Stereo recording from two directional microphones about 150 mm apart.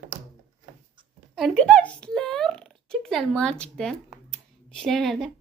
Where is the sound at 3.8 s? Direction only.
5° left (ahead or behind).